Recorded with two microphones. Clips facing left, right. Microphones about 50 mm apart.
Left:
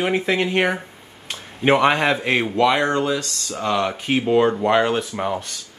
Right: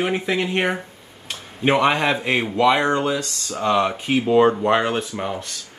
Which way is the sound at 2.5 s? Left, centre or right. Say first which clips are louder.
Right 2 dB; right.